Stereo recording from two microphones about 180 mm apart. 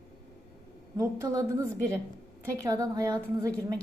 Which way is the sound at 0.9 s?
15° right (ahead or behind).